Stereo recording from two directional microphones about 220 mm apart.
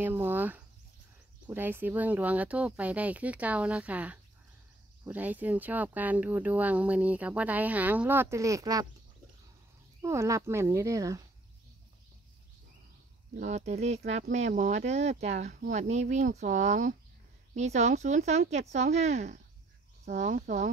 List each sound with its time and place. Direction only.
0.0 s speech: 10° right (ahead or behind)
10.0 s speech: 15° right (ahead or behind)
13.4 s speech: 30° right (ahead or behind)